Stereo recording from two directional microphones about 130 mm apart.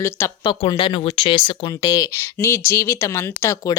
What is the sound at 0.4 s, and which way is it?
Speech, 40° left (ahead or behind).